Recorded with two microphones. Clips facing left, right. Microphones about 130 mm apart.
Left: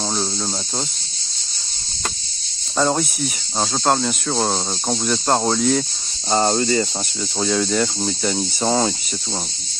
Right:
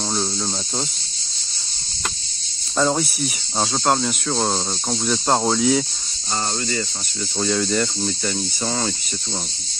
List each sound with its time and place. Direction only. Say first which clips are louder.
2.8 s cricket: left 1 dB; 5° left (ahead or behind)
6.3 s cricket: left 8 dB; 40° left (ahead or behind)
7.3 s cricket: left 1 dB; centre (ahead or behind)
8.6 s speech: left 6 dB; 25° left (ahead or behind)